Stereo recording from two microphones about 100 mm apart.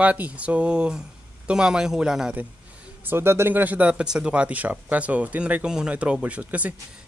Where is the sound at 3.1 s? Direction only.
25° right (ahead or behind).